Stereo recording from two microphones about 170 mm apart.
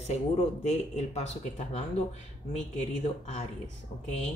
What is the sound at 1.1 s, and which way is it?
Speech, 40° left (ahead or behind).